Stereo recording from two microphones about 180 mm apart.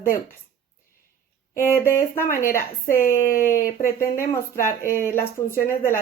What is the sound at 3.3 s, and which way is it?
Speech, 50° left (ahead or behind).